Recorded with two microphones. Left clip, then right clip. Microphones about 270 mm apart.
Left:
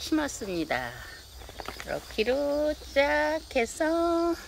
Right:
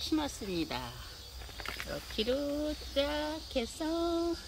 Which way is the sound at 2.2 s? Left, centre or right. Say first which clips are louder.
Left 7 dB; centre.